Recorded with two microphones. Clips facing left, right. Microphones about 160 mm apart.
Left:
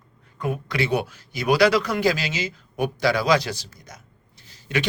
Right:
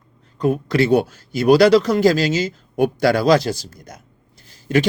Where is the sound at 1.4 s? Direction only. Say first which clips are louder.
Right 7 dB; 35° right (ahead or behind).